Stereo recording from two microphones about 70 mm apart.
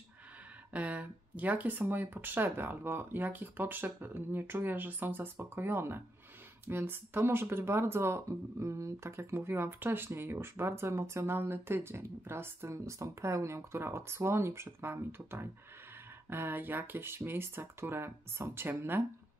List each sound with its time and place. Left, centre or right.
0.7 s speech: right